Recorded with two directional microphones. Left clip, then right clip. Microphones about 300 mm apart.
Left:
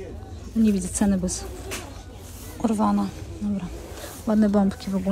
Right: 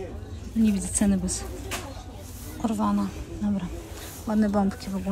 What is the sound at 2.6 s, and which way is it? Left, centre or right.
Speech, centre.